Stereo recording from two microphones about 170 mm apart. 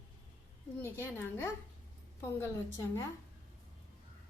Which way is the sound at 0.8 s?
10° left (ahead or behind).